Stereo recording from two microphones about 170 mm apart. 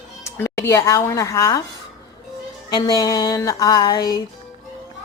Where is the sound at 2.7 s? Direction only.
20° left (ahead or behind).